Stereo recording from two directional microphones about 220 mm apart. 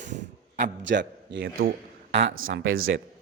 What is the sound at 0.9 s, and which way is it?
A man's voice, 55° right (ahead or behind).